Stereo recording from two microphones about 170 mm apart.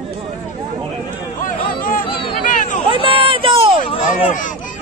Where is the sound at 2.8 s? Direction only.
30° right (ahead or behind).